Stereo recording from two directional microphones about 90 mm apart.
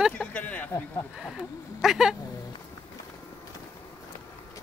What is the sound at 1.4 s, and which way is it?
Speech, 5° right (ahead or behind).